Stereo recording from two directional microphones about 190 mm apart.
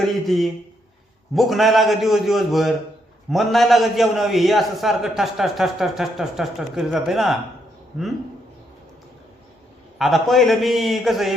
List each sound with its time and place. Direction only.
0.0 s a man's voice: centre (ahead or behind)
10.0 s a man's voice: centre (ahead or behind)